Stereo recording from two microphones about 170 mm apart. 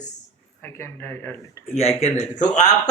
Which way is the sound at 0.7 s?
15° left (ahead or behind).